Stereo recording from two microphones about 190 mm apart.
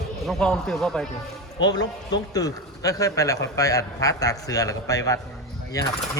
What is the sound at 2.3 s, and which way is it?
A man's voice, 20° left (ahead or behind).